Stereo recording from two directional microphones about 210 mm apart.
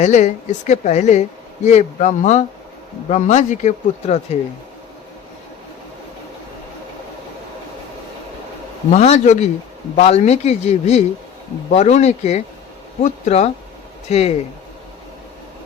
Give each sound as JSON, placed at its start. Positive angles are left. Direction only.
{"t": 0.0, "sound": "speech", "side_deg": 35}
{"t": 8.9, "sound": "speech", "side_deg": 35}